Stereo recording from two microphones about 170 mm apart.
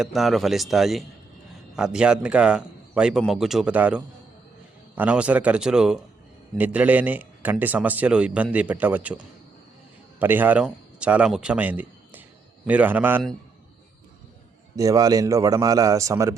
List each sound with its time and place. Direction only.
0.0 s a man's voice: centre (ahead or behind)
10.2 s a man's voice: 10° right (ahead or behind)
14.8 s a man's voice: 20° right (ahead or behind)